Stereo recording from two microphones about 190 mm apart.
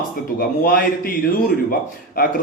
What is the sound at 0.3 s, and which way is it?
Speech, 50° left (ahead or behind).